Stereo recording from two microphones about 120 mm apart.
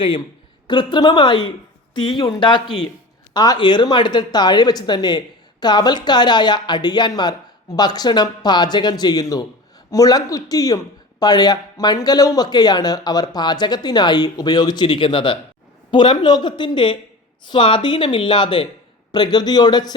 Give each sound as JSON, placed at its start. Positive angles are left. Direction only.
{"t": 0.7, "sound": "speech", "side_deg": 40}